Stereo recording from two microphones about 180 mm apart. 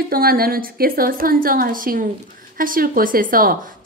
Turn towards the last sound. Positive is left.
turn(degrees=-50)  # may be behind; listen again after turning